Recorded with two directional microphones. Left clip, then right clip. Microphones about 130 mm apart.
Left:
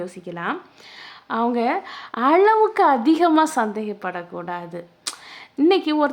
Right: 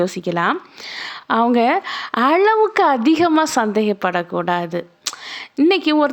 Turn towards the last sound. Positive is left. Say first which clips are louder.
# right 3 dB
turn(degrees=-25)  # may be behind; listen again after turning